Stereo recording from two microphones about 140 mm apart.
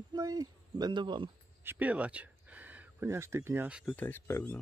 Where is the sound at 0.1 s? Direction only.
25° right (ahead or behind).